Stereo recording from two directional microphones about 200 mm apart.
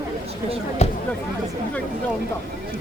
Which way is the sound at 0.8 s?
35° left (ahead or behind).